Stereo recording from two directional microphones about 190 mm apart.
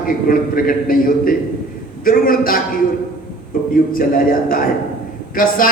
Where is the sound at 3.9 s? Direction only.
50° left (ahead or behind).